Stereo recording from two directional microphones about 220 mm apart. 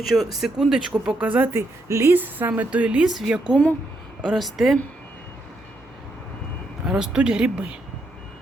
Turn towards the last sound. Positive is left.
turn(degrees=-5)  # may be behind; listen again after turning